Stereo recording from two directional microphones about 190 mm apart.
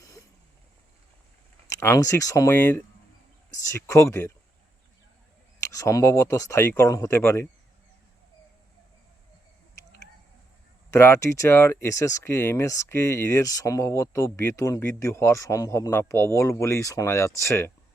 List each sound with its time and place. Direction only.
1.7 s speech: 15° left (ahead or behind)
5.6 s speech: 15° left (ahead or behind)
10.9 s speech: 15° left (ahead or behind)